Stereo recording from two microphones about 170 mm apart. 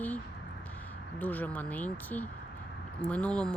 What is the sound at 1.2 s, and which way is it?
Speech, 10° left (ahead or behind).